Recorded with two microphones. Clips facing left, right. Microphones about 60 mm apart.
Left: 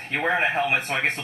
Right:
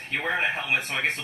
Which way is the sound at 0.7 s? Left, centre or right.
Left.